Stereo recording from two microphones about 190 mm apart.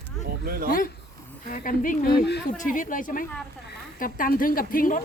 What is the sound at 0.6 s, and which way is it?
A woman's voice, 50° left (ahead or behind).